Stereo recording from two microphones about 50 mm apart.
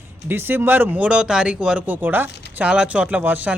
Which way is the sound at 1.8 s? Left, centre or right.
Right.